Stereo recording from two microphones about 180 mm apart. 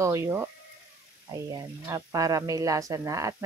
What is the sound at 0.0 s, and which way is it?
A woman's voice, 15° right (ahead or behind).